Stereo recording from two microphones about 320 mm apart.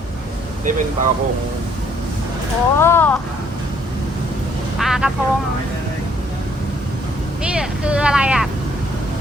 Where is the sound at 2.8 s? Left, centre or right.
Centre.